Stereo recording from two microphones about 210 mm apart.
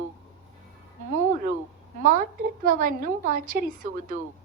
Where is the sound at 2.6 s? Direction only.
40° right (ahead or behind).